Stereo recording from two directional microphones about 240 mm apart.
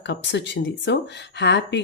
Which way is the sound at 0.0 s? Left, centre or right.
Left.